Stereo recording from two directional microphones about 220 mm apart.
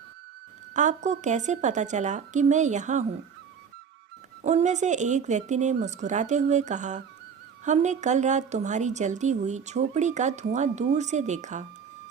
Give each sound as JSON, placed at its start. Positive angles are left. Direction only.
{"t": 0.7, "sound": "a woman's voice", "side_deg": -35}
{"t": 4.4, "sound": "a woman's voice", "side_deg": -30}